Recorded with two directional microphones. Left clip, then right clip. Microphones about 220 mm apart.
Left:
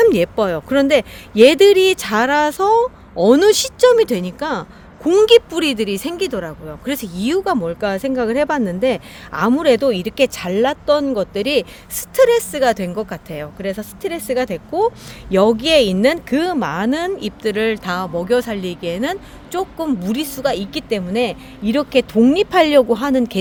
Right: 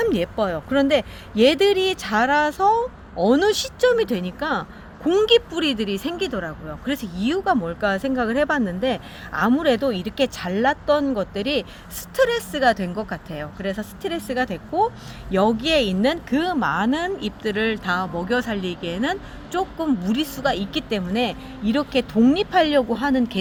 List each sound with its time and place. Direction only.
0.0 s speech: 55° left (ahead or behind)